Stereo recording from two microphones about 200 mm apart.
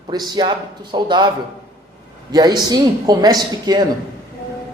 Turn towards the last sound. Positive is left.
turn(degrees=-20)  # may be behind; listen again after turning